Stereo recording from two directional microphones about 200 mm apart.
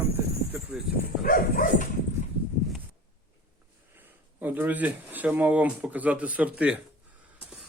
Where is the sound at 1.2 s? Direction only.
45° left (ahead or behind).